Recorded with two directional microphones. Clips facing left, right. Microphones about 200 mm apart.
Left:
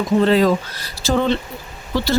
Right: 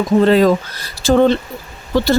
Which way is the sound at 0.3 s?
50° right (ahead or behind).